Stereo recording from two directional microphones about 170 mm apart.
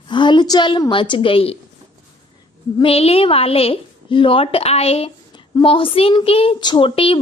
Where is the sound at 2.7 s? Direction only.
35° left (ahead or behind).